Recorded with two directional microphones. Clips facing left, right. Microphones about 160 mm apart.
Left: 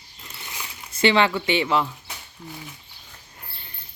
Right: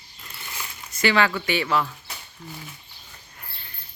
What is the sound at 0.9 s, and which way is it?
Speech, 25° left (ahead or behind).